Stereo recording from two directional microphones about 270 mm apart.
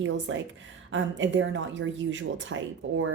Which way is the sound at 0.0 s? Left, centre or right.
Right.